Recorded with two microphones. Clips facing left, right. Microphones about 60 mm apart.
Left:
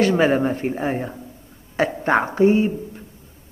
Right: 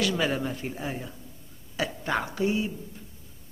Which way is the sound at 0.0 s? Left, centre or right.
Left.